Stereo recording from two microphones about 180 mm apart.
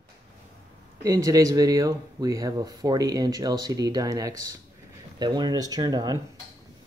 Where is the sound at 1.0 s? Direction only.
20° right (ahead or behind).